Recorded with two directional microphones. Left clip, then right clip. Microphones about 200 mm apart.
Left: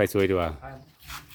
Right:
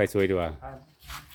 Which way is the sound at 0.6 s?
Centre (ahead or behind).